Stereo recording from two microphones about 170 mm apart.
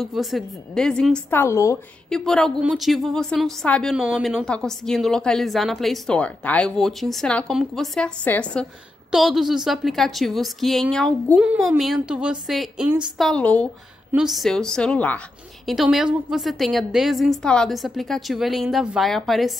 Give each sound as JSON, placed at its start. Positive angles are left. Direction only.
{"t": 0.0, "sound": "a woman's voice", "side_deg": 0}
{"t": 1.4, "sound": "a woman's voice", "side_deg": 15}
{"t": 2.0, "sound": "a woman's voice", "side_deg": 5}
{"t": 11.4, "sound": "a woman's voice", "side_deg": -5}